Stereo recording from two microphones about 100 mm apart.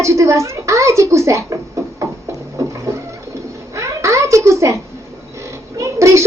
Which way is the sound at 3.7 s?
30° right (ahead or behind).